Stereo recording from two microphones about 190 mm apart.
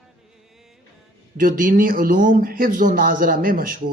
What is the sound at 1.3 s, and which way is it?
Speech, 45° right (ahead or behind).